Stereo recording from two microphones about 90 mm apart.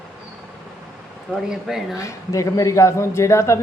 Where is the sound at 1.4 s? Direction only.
5° right (ahead or behind).